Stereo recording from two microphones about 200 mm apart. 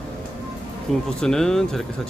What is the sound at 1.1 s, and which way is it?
Speech, 5° left (ahead or behind).